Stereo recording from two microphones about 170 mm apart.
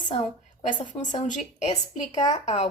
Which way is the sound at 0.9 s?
45° left (ahead or behind).